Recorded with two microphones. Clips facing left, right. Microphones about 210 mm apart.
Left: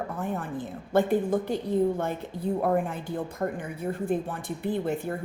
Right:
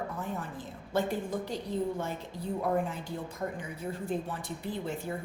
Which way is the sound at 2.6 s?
55° left (ahead or behind).